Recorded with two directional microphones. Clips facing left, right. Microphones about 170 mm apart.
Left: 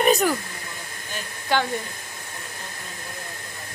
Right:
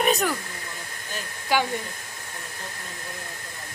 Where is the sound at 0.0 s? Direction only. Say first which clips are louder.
Left 4 dB; centre (ahead or behind).